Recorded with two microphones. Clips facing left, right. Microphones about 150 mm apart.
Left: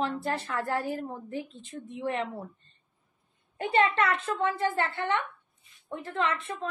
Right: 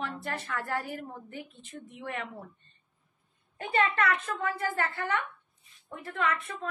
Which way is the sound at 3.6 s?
25° left (ahead or behind).